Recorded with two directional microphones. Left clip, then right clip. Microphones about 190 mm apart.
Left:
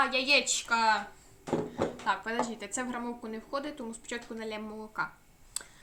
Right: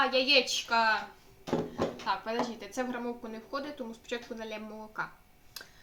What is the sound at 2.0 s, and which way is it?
Speech, 35° left (ahead or behind).